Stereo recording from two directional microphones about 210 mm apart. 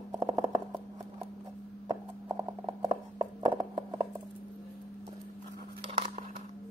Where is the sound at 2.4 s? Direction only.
20° right (ahead or behind).